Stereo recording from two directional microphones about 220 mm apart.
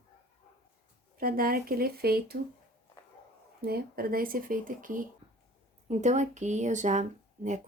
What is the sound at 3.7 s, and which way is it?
Speech, 40° right (ahead or behind).